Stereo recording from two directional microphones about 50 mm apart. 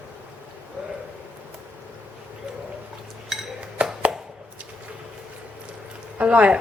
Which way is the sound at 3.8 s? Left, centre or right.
Right.